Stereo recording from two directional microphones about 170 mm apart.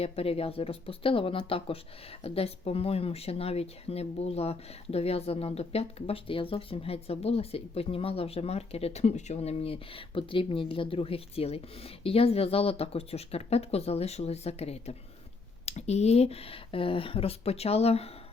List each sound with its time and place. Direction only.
0.0 s speech: 35° left (ahead or behind)